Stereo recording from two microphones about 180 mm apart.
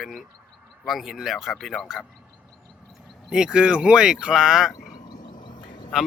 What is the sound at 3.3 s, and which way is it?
Speech, 5° right (ahead or behind).